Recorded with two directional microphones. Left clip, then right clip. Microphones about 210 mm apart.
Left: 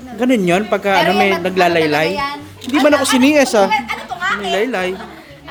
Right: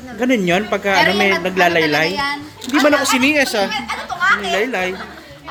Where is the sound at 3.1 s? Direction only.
35° left (ahead or behind).